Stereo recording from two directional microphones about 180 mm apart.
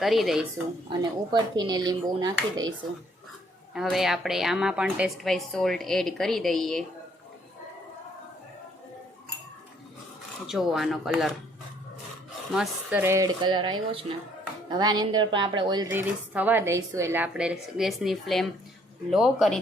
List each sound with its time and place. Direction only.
0.0 s a woman's voice: centre (ahead or behind)
0.9 s speech: 25° right (ahead or behind)
3.8 s a woman's voice: centre (ahead or behind)
10.4 s a woman's voice: centre (ahead or behind)
12.5 s speech: 5° right (ahead or behind); by 15.9 s 25° right (ahead or behind)
15.9 s a woman's voice: 10° right (ahead or behind)